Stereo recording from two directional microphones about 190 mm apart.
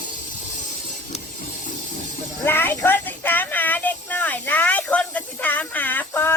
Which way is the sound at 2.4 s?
10° left (ahead or behind).